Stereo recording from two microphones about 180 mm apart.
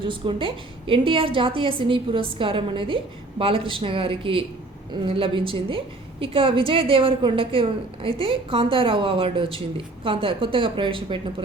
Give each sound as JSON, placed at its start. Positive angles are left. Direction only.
{"t": 0.0, "sound": "a woman's voice", "side_deg": -30}